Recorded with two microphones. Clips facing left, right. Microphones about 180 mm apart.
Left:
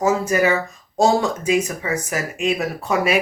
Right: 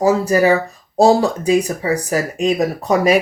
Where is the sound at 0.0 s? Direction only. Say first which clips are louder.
Right 4 dB; 35° right (ahead or behind).